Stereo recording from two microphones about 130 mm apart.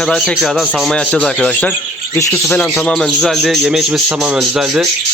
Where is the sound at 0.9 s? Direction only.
10° left (ahead or behind).